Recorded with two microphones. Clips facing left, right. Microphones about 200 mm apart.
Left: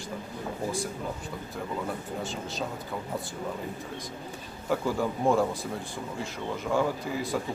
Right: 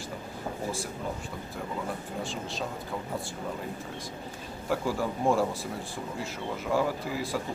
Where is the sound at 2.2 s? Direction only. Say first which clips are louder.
Left 1 dB; centre (ahead or behind).